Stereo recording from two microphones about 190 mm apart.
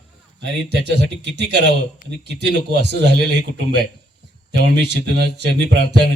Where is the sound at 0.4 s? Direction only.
65° right (ahead or behind).